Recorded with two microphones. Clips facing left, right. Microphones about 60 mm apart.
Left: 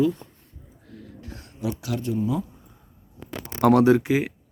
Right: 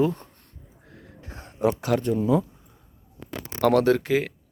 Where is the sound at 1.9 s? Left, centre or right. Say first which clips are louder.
Right 5 dB; right.